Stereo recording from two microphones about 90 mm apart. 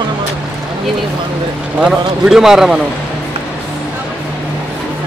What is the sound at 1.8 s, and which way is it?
Speech, 5° right (ahead or behind).